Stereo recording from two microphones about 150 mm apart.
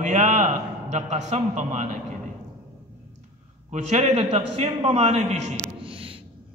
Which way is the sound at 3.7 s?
50° right (ahead or behind).